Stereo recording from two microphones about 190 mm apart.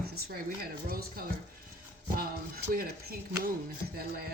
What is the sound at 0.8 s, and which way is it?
Speech, 50° right (ahead or behind).